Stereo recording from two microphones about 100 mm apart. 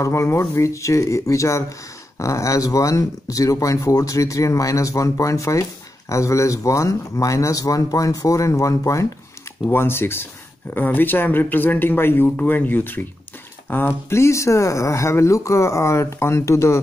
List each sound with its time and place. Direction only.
0.0 s speech: 30° left (ahead or behind)